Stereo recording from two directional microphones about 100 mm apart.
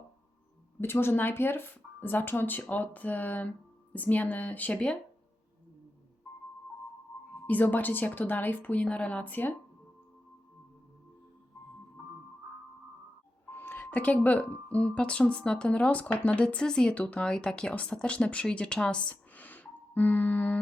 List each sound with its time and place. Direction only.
0.8 s speech: 25° left (ahead or behind)
7.4 s speech: 15° left (ahead or behind)
13.5 s speech: 20° left (ahead or behind)